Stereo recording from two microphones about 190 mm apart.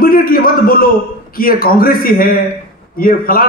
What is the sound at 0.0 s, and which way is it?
A man's voice, 50° left (ahead or behind).